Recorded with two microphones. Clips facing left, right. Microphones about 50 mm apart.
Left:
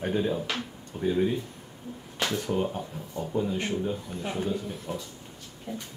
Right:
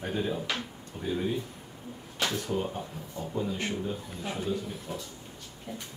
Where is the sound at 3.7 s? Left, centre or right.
Centre.